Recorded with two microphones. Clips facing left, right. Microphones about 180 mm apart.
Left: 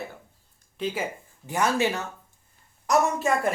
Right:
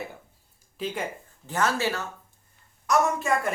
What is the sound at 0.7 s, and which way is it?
Speech, centre (ahead or behind).